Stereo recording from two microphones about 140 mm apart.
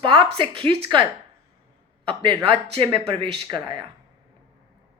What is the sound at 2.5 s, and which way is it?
Speech, 35° right (ahead or behind).